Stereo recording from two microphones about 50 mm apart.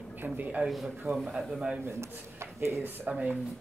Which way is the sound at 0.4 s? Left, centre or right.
Right.